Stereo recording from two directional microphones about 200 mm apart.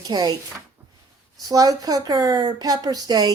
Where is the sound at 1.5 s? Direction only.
20° right (ahead or behind).